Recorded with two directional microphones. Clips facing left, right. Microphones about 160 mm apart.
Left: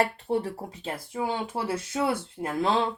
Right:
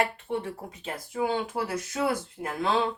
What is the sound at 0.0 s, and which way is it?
Speech, 35° left (ahead or behind).